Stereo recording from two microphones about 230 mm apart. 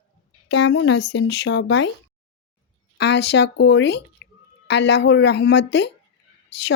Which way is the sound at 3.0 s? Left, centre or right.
Left.